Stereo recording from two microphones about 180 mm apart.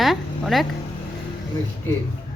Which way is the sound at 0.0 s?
Centre (ahead or behind).